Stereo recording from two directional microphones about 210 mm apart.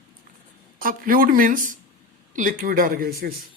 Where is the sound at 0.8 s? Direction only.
40° right (ahead or behind).